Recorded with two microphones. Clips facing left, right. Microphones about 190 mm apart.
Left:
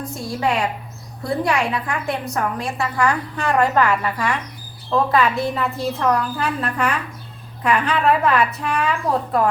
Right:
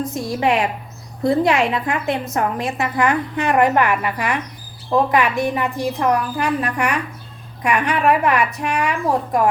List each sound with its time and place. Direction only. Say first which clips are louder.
0.0 s a woman's voice: right 3 dB; 20° right (ahead or behind)